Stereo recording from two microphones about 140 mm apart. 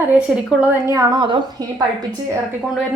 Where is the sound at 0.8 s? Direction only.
25° right (ahead or behind).